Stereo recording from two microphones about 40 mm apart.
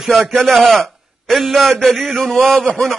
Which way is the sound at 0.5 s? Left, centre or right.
Centre.